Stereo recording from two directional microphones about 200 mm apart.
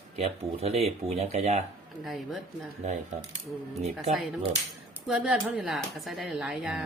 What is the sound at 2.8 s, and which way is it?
Speech, 35° right (ahead or behind).